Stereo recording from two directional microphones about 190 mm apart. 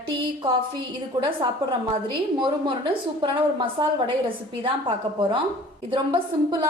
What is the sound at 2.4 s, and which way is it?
A woman's voice, 25° right (ahead or behind).